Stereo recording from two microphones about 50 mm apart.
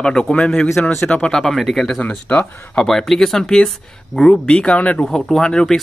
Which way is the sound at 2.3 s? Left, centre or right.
Left.